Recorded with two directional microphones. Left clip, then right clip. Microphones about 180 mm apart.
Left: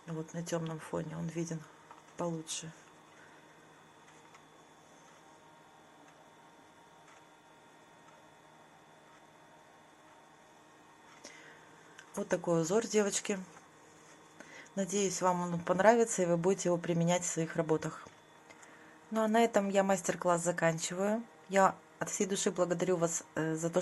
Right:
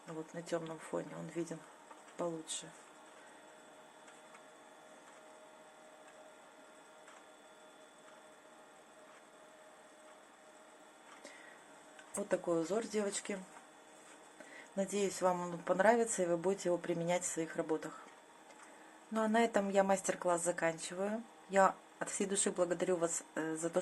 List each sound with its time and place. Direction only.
0.1 s speech: 15° left (ahead or behind)
12.3 s speech: 30° left (ahead or behind)
14.8 s speech: 20° left (ahead or behind)
19.1 s speech: 15° left (ahead or behind)